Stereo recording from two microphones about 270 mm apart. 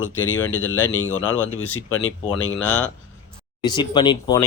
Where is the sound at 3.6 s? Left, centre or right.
Centre.